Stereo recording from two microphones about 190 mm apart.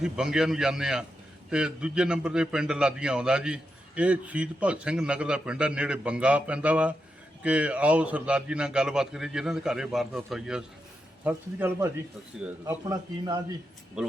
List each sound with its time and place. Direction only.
0.0 s a man's voice: 5° right (ahead or behind); by 13.4 s 20° right (ahead or behind)
14.0 s a man's voice: 5° right (ahead or behind)